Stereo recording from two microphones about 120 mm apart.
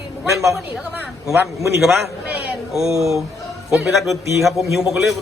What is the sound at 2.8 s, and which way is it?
Speech, 25° right (ahead or behind).